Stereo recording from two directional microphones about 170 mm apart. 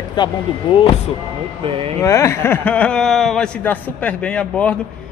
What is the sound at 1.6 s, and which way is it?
Speech, 30° right (ahead or behind).